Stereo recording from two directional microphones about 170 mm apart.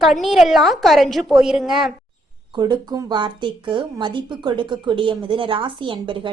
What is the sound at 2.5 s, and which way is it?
Speech, 25° right (ahead or behind).